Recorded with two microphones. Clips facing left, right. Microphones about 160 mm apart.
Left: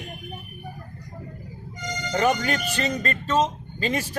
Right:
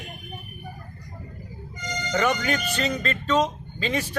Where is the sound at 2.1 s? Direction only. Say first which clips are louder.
Left 1 dB; 35° left (ahead or behind).